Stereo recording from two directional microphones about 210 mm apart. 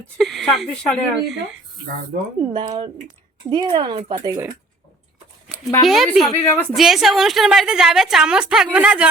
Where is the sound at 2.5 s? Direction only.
25° right (ahead or behind).